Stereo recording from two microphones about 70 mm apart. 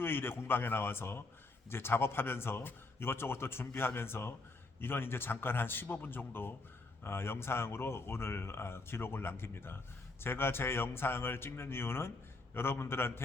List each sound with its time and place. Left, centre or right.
0.0 s speech: left